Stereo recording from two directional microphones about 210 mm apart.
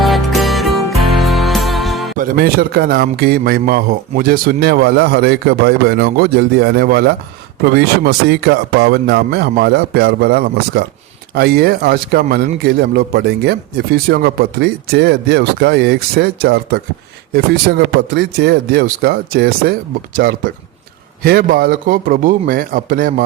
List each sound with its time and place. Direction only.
0.0 s music: centre (ahead or behind)
2.1 s a man's voice: 45° right (ahead or behind)